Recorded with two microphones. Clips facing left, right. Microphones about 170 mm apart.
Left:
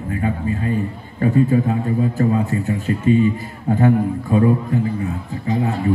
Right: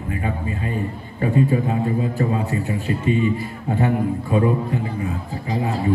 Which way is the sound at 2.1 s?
45° left (ahead or behind).